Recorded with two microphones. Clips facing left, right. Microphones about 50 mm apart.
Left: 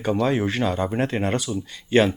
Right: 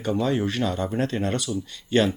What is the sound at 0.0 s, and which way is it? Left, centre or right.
Speech, left.